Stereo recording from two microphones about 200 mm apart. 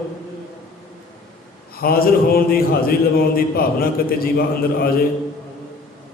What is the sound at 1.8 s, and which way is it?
A man's voice, 50° left (ahead or behind).